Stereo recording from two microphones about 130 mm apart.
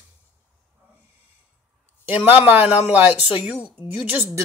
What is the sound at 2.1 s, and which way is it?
Speech, 15° right (ahead or behind).